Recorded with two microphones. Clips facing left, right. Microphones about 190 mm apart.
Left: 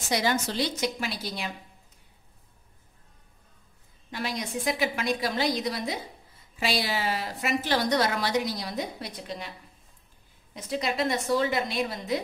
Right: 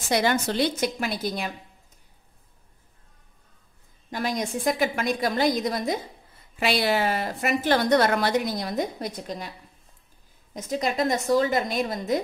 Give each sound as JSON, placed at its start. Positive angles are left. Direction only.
{"t": 0.1, "sound": "a woman's voice", "side_deg": -60}
{"t": 4.1, "sound": "a woman's voice", "side_deg": -45}
{"t": 6.6, "sound": "a woman's voice", "side_deg": -60}
{"t": 10.5, "sound": "a woman's voice", "side_deg": -45}